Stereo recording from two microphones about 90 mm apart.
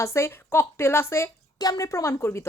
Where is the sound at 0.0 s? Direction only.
30° left (ahead or behind).